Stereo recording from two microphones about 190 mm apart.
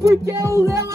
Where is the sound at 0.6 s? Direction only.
15° right (ahead or behind).